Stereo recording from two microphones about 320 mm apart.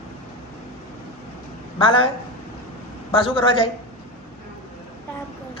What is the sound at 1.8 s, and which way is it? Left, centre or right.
Speech, centre.